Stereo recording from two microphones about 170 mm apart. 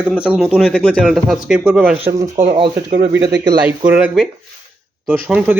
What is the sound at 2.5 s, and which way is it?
Speech, 30° right (ahead or behind).